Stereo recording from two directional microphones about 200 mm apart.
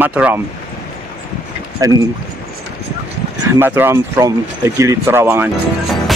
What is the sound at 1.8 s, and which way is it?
Speech, 15° right (ahead or behind).